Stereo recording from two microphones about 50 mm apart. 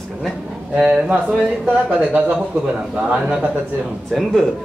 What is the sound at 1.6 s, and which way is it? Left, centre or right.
Speech, right.